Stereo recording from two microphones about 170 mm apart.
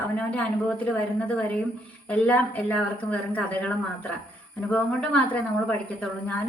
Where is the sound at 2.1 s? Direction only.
10° left (ahead or behind).